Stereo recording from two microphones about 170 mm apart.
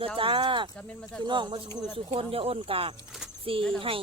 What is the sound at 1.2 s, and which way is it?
Speech, 25° right (ahead or behind).